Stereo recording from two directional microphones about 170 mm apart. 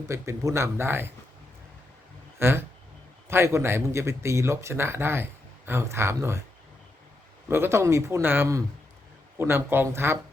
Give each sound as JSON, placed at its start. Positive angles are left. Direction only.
{"t": 0.1, "sound": "speech", "side_deg": -15}
{"t": 2.4, "sound": "speech", "side_deg": -15}
{"t": 7.4, "sound": "speech", "side_deg": -15}